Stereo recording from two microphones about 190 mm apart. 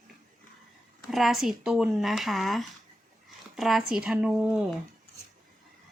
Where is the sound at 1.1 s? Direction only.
Centre (ahead or behind).